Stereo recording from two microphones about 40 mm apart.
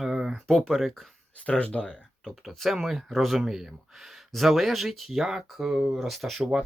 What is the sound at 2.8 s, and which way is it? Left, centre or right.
Speech, centre.